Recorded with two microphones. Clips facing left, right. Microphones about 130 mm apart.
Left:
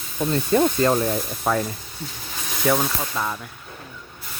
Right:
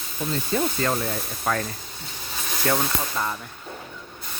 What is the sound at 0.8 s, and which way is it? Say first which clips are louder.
Speech: left 6 dB; 25° left (ahead or behind).